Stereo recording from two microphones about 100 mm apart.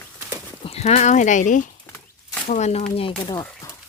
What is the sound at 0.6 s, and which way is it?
Horse, 90° left.